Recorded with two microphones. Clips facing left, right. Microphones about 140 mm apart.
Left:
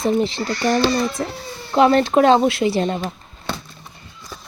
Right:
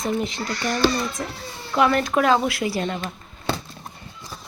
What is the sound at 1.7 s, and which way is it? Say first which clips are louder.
Speech: left 5 dB; 30° left (ahead or behind).